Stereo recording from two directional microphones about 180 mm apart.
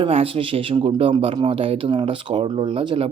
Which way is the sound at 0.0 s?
30° right (ahead or behind).